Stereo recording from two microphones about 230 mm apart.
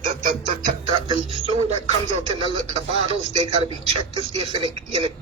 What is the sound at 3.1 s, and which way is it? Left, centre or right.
Speech, right.